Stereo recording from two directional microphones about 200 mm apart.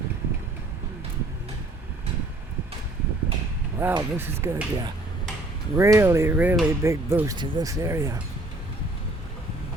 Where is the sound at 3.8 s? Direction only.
10° right (ahead or behind).